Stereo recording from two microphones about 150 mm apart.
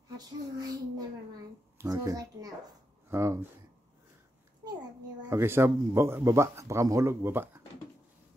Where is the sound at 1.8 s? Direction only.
20° right (ahead or behind).